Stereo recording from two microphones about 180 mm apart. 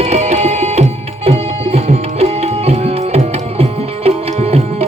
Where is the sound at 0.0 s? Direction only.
40° right (ahead or behind).